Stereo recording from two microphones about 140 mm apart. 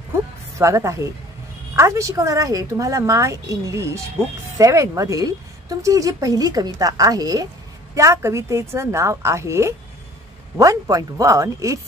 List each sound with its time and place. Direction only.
0.6 s a woman's voice: 20° right (ahead or behind)